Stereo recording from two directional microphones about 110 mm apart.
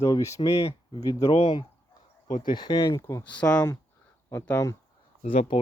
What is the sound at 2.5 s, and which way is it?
Speech, 40° left (ahead or behind).